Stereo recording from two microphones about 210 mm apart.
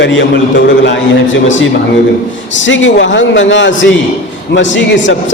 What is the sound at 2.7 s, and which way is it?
A man's voice, 60° left (ahead or behind).